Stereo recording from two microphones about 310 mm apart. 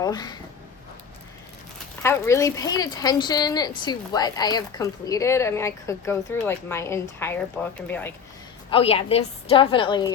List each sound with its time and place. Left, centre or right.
0.0 s speech: centre
2.0 s speech: centre
8.7 s speech: centre